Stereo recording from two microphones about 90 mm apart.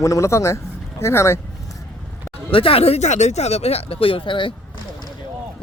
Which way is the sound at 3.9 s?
90° left.